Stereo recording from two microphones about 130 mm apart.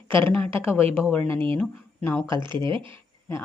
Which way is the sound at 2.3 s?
35° right (ahead or behind).